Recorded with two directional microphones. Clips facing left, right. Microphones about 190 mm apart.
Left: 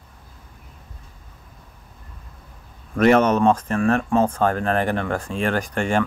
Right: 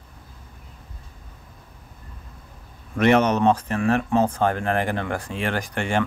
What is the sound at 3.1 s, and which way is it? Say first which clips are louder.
Speech: even; 20° right (ahead or behind).